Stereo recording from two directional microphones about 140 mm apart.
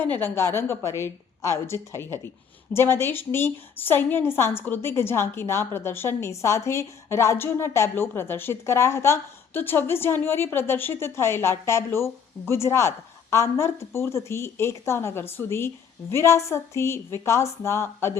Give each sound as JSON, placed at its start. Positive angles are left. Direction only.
{"t": 0.0, "sound": "a woman's voice", "side_deg": 15}